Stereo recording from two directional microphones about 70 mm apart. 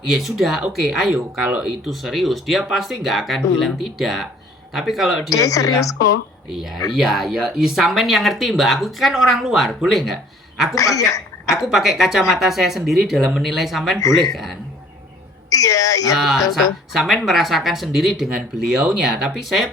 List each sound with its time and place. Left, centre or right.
0.1 s speech: centre
5.3 s speech: left
6.5 s speech: centre
10.8 s a woman's voice: left
11.5 s speech: centre
15.4 s speech: left
16.1 s speech: centre